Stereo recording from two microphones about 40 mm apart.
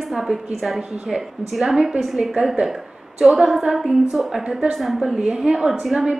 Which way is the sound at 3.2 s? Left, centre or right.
Centre.